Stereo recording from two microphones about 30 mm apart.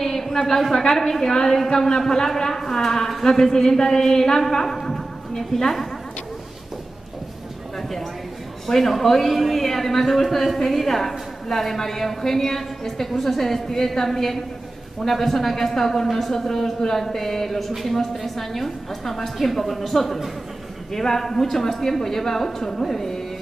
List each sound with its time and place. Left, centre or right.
0.0 s a sound: centre
0.9 s a woman's voice: centre
8.6 s a woman's voice: centre